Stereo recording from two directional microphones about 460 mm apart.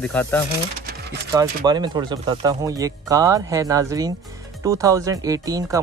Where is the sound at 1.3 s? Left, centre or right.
Centre.